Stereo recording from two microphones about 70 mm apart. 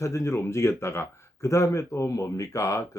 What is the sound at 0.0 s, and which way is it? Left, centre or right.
Speech, left.